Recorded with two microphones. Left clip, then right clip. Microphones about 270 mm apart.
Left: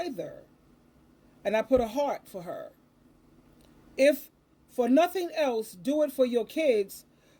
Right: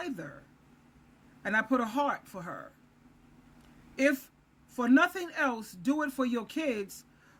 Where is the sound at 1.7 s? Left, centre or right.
Centre.